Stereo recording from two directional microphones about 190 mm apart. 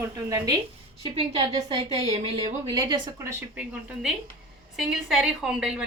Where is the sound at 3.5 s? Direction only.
5° right (ahead or behind).